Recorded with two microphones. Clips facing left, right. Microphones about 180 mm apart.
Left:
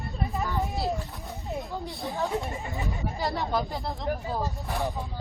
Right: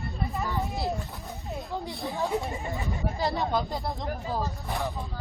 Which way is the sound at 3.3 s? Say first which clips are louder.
Left 1 dB; 20° right (ahead or behind).